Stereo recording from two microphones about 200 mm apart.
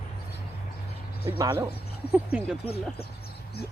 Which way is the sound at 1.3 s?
20° right (ahead or behind).